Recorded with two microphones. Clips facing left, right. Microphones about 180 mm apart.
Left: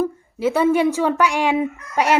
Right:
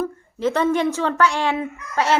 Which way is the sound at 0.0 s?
10° left (ahead or behind).